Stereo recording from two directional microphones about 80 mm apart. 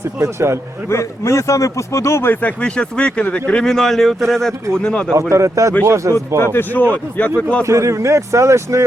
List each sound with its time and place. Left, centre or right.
0.2 s speech: right
0.9 s a man's voice: left
2.3 s speech: centre
5.1 s speech: right
6.4 s speech: left
7.6 s speech: right